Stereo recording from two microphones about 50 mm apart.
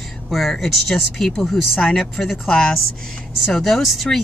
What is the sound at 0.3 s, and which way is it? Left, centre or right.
Speech, centre.